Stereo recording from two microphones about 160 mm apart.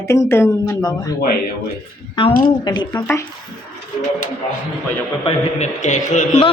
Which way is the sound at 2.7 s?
25° left (ahead or behind).